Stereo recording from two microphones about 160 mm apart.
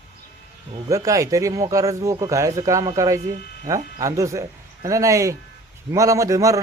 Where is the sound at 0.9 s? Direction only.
20° right (ahead or behind).